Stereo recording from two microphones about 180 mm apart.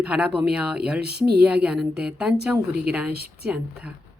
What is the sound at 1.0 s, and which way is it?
Speech, 65° right (ahead or behind).